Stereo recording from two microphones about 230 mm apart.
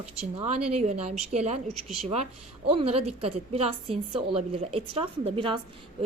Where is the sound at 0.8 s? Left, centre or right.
Right.